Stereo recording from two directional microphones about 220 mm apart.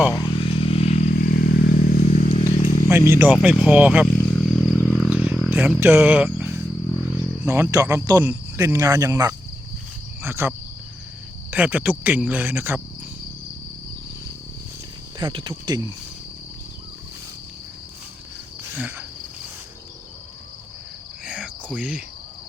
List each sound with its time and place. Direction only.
0.1 s motorcycle: 20° left (ahead or behind); by 2.7 s 35° left (ahead or behind)
3.1 s speech: 10° right (ahead or behind)
4.0 s a sound: 5° left (ahead or behind)
7.4 s speech: 10° right (ahead or behind)
11.5 s speech: 5° right (ahead or behind)
15.2 s cricket: 20° right (ahead or behind)
18.7 s cricket: 10° right (ahead or behind)
21.8 s insect: 5° right (ahead or behind)